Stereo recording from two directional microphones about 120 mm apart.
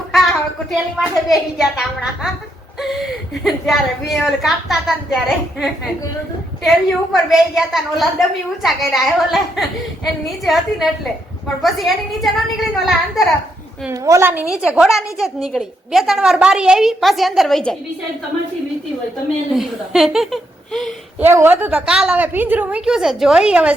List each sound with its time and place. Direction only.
0.7 s a woman's voice: centre (ahead or behind)
3.4 s a woman's voice: centre (ahead or behind)
6.6 s a woman's voice: centre (ahead or behind)
13.9 s a woman's voice: 25° right (ahead or behind)
14.5 s a woman's voice: 5° right (ahead or behind)
19.5 s a woman's voice: centre (ahead or behind)
21.2 s a woman's voice: 20° right (ahead or behind)